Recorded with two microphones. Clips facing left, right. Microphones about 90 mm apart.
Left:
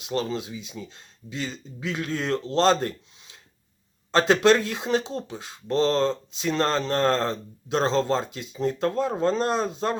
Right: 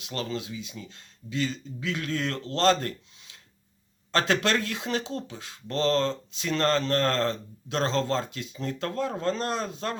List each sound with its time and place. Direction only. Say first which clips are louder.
0.0 s speech: left 5 dB; 20° left (ahead or behind)
4.1 s speech: left 6 dB; 20° left (ahead or behind)